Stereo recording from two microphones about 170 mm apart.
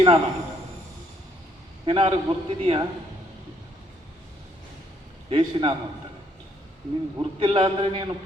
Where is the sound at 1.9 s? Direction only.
30° right (ahead or behind).